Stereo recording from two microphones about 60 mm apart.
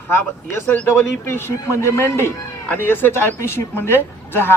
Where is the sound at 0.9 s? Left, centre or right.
Left.